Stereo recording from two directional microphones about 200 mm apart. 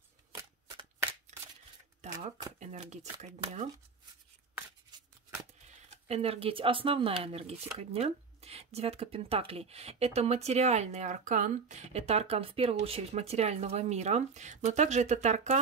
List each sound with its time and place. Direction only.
2.0 s a sound: 35° right (ahead or behind)
2.6 s speech: 35° right (ahead or behind)
6.0 s speech: 30° right (ahead or behind)